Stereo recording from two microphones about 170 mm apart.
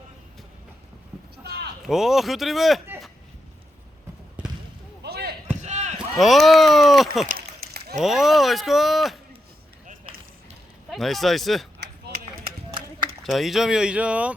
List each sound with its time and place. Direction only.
1.5 s a sound: 75° right (ahead or behind)
1.8 s speech: centre (ahead or behind)
5.0 s basketball bounce: 70° right (ahead or behind)
5.6 s a sound: 40° right (ahead or behind)
6.1 s speech: centre (ahead or behind)
7.3 s a sound: 65° right (ahead or behind)
7.9 s speech: centre (ahead or behind)
10.8 s speech: centre (ahead or behind)
13.2 s speech: centre (ahead or behind)